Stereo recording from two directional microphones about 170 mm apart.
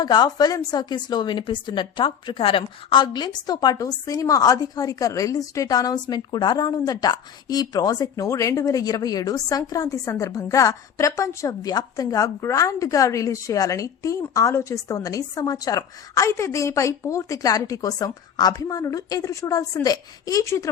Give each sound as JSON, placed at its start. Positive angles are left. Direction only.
{"t": 0.0, "sound": "a woman's voice", "side_deg": 25}